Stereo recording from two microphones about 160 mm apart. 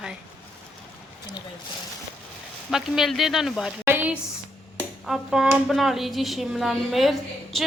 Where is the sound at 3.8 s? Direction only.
10° right (ahead or behind).